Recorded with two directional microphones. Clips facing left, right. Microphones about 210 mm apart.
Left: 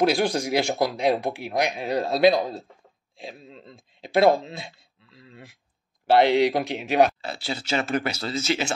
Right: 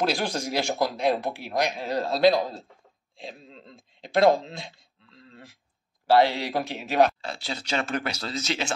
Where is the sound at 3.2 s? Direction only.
5° left (ahead or behind).